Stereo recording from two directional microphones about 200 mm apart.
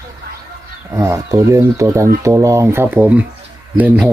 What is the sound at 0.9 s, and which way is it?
Speech, 15° right (ahead or behind).